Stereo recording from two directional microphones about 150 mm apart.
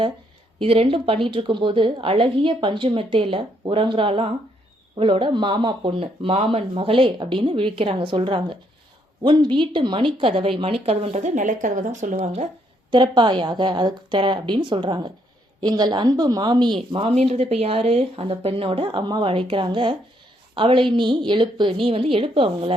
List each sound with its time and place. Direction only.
0.6 s speech: 40° right (ahead or behind)
12.9 s speech: 30° right (ahead or behind)